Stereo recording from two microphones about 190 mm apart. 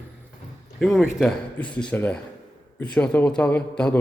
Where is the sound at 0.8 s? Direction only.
Centre (ahead or behind).